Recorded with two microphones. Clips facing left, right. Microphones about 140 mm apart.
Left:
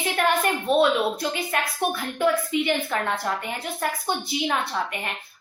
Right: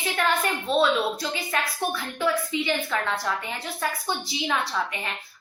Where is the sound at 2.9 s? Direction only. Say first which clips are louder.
Left 1 dB; 40° left (ahead or behind).